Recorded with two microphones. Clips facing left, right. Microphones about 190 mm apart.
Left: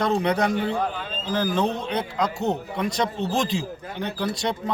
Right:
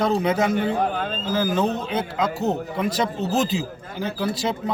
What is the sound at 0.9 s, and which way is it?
Speech, 50° right (ahead or behind).